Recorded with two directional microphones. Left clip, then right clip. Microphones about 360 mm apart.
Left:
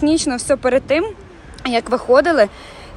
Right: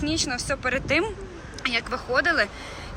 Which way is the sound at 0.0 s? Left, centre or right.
Centre.